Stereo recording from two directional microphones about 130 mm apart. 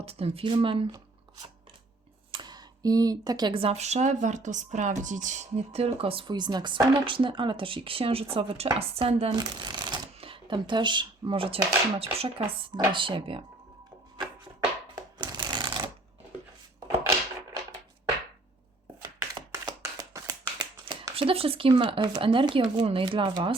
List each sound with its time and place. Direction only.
0.0 s speech: 50° right (ahead or behind)
2.3 s speech: 35° right (ahead or behind)
9.3 s speech: 35° right (ahead or behind); by 12.5 s 50° right (ahead or behind)
12.7 s speech: 35° right (ahead or behind)
15.2 s a sound: 35° right (ahead or behind)
19.0 s shuffling cards: 30° right (ahead or behind)
20.6 s a sound: 35° right (ahead or behind)
22.2 s speech: 40° right (ahead or behind)